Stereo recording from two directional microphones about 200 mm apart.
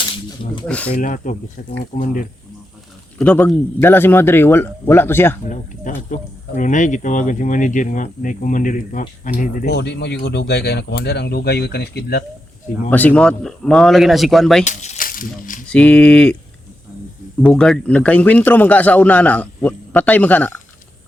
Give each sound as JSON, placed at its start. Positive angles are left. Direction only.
{"t": 0.7, "sound": "a man's voice", "side_deg": 5}
{"t": 0.9, "sound": "speech", "side_deg": 40}
{"t": 3.2, "sound": "a man's voice", "side_deg": 10}
{"t": 6.1, "sound": "speech", "side_deg": 40}
{"t": 12.9, "sound": "speech", "side_deg": 10}
{"t": 14.6, "sound": "rattle", "side_deg": 35}
{"t": 15.7, "sound": "speech", "side_deg": 5}
{"t": 17.4, "sound": "a man's voice", "side_deg": 5}